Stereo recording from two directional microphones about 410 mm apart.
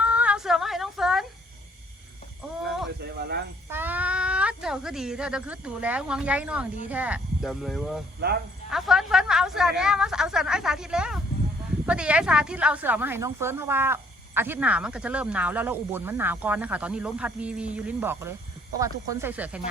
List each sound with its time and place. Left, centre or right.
0.0 s a sound: centre
3.0 s snake: right
3.7 s speech: centre